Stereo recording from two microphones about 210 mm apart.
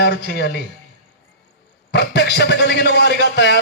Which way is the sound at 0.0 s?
50° left (ahead or behind).